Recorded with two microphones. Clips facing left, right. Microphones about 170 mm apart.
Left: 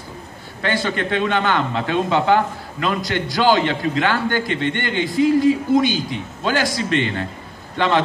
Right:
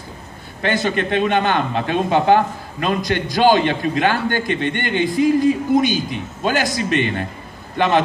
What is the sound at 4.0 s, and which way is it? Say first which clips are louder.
Speech: right 2 dB; 45° right (ahead or behind).